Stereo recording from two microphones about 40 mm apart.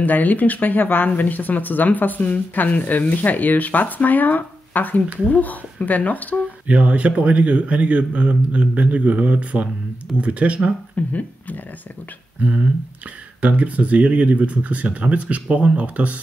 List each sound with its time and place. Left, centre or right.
0.0 s speech: left
6.7 s speech: right
11.0 s speech: left
12.4 s speech: right